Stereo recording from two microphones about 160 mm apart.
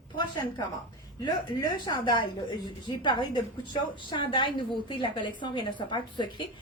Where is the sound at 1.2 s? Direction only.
25° left (ahead or behind).